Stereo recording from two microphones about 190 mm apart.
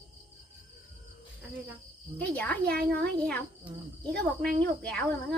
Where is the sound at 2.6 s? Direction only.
55° right (ahead or behind).